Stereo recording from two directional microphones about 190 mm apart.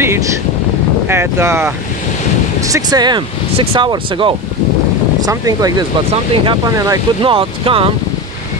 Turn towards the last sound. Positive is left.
turn(degrees=-30)  # may be behind; listen again after turning